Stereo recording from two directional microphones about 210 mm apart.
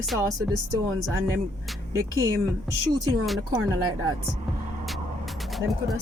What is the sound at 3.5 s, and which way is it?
Speech, 20° right (ahead or behind).